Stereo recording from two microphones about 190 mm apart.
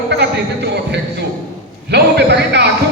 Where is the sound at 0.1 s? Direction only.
60° right (ahead or behind).